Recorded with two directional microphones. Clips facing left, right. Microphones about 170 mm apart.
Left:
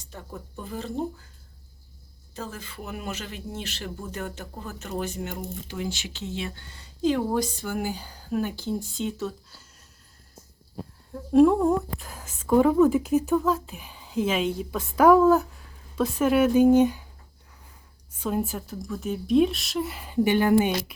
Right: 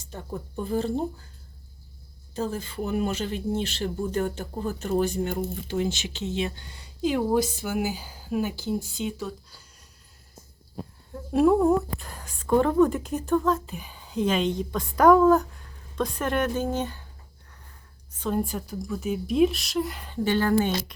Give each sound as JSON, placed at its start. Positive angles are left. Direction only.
{"t": 0.1, "sound": "speech", "side_deg": -30}
{"t": 2.3, "sound": "speech", "side_deg": -30}
{"t": 11.1, "sound": "a woman's voice", "side_deg": -5}
{"t": 18.2, "sound": "a woman's voice", "side_deg": 5}